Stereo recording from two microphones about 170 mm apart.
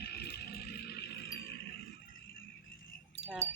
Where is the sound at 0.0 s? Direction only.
75° left (ahead or behind).